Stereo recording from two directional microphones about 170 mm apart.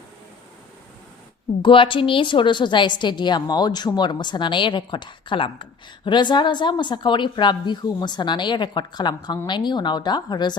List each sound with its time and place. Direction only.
1.6 s a woman's voice: 30° left (ahead or behind)